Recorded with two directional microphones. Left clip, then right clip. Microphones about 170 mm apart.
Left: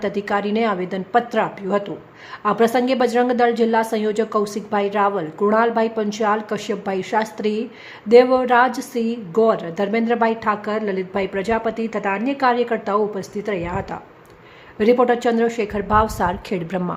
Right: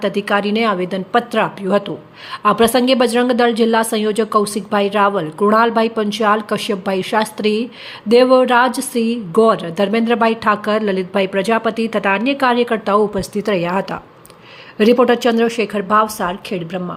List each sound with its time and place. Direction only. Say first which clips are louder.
0.0 s a woman's voice: right 5 dB; 10° right (ahead or behind)
16.1 s a woman's voice: right 1 dB; 5° left (ahead or behind)